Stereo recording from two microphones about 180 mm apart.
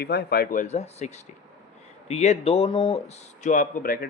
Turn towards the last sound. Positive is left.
turn(degrees=50)  # may be behind; listen again after turning